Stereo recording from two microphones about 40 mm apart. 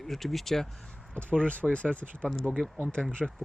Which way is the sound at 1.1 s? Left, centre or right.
Left.